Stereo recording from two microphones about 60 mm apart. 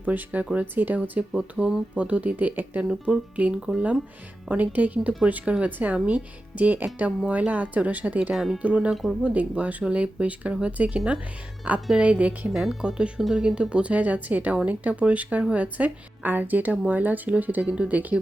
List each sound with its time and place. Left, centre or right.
0.0 s a woman's voice: right
1.3 s a woman's voice: centre
8.3 s speech: centre
8.6 s a woman's voice: right
12.5 s a woman's voice: centre